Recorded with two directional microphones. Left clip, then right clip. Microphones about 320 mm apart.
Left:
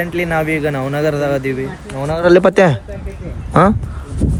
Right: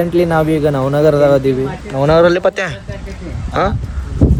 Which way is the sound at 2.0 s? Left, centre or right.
Right.